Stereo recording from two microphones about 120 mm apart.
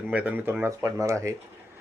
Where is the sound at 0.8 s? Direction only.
25° right (ahead or behind).